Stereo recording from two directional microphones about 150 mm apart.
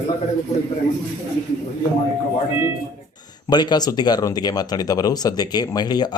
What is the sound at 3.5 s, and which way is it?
Speech, 30° left (ahead or behind).